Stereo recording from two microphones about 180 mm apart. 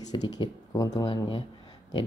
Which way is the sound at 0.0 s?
20° left (ahead or behind).